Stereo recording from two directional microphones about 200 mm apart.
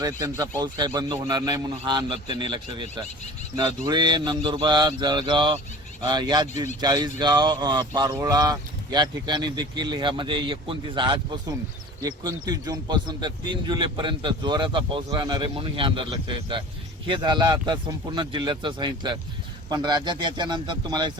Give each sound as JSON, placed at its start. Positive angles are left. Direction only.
{"t": 0.0, "sound": "speech", "side_deg": -15}